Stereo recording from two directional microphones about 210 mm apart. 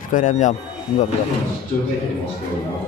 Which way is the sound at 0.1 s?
35° left (ahead or behind).